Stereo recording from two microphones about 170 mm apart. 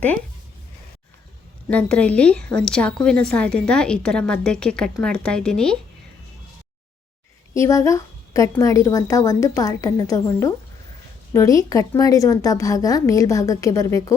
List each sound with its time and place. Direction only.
1.6 s a woman's voice: 10° left (ahead or behind)
7.5 s a woman's voice: 20° left (ahead or behind)